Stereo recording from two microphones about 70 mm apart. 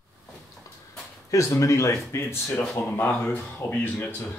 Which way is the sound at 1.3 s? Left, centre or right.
Left.